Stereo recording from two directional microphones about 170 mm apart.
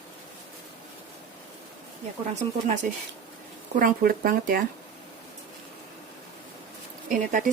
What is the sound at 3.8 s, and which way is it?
Speech, 55° right (ahead or behind).